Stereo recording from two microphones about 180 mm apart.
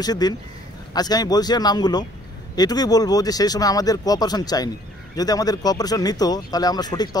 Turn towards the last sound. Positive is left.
turn(degrees=20)  # may be behind; listen again after turning